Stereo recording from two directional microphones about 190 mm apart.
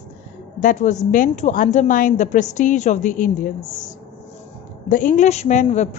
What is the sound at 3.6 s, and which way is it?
Speech, 20° left (ahead or behind).